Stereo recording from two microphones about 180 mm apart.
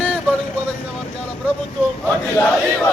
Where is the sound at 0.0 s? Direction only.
5° left (ahead or behind).